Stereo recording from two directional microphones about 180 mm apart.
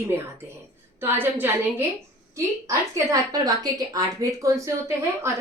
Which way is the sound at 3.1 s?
20° right (ahead or behind).